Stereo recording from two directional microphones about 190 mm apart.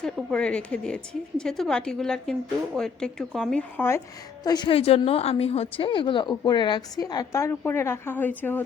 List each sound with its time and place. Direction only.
0.0 s speech: 5° left (ahead or behind)
4.4 s a woman's voice: 20° left (ahead or behind)